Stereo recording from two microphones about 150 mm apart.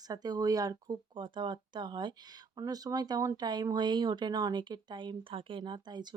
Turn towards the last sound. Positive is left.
turn(degrees=-30)  # may be behind; listen again after turning